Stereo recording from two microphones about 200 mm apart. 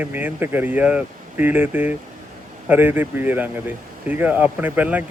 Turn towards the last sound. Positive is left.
turn(degrees=-10)  # may be behind; listen again after turning